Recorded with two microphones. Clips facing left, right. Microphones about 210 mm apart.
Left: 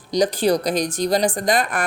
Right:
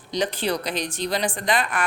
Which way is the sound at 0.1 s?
40° left (ahead or behind).